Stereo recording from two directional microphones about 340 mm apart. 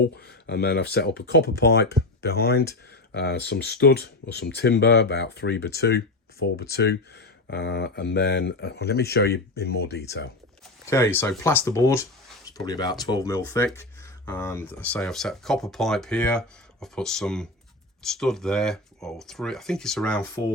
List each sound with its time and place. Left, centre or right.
0.2 s speech: left
10.8 s speech: centre